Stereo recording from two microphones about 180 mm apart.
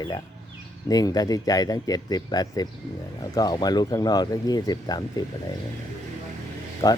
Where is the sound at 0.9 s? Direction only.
20° left (ahead or behind).